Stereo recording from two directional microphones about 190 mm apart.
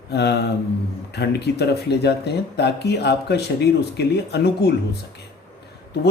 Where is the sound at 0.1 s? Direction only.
60° left (ahead or behind).